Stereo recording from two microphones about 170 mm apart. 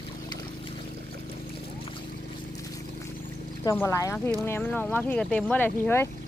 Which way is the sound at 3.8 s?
20° left (ahead or behind).